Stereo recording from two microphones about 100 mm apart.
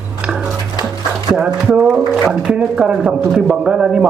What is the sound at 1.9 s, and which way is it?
Speech, 10° right (ahead or behind).